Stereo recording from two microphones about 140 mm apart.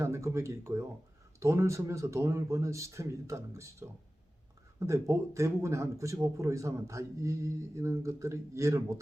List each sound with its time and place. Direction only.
0.0 s a man's voice: 20° right (ahead or behind)